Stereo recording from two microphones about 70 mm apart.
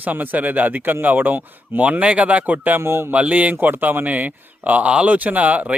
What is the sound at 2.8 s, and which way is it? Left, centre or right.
Mantra, right.